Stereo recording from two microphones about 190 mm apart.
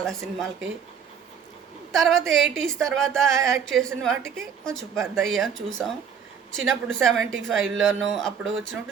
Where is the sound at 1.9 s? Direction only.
Centre (ahead or behind).